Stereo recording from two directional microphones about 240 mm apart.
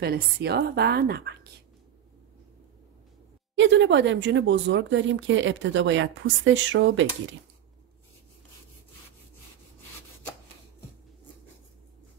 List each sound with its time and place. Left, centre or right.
0.0 s a woman's voice: right
3.5 s speech: right